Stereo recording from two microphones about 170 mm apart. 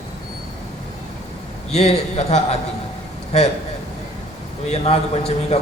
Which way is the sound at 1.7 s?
40° left (ahead or behind).